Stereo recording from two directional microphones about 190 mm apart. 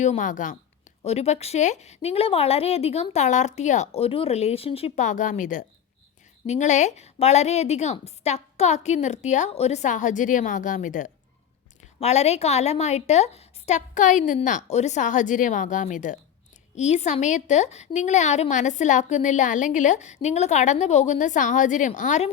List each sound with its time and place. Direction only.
0.0 s a woman's voice: 40° left (ahead or behind)